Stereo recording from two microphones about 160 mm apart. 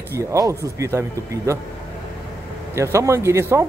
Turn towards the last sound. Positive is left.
turn(degrees=-15)  # may be behind; listen again after turning